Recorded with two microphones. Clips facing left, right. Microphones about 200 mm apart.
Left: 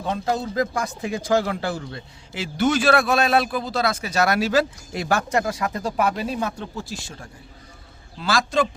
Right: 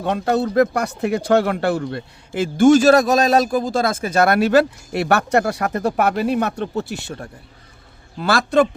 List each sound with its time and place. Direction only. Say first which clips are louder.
0.0 s speech: right 5 dB; 70° right (ahead or behind)
8.2 s speech: right 5 dB; 60° right (ahead or behind)